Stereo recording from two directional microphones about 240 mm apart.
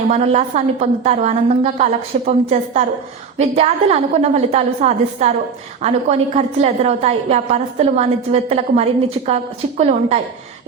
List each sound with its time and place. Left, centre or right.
0.1 s a woman's voice: right